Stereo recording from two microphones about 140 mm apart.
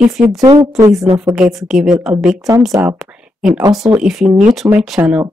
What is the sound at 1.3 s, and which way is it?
Speech, 5° right (ahead or behind).